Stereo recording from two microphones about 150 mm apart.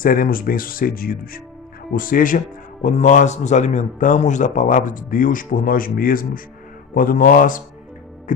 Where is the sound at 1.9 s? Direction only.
65° left (ahead or behind).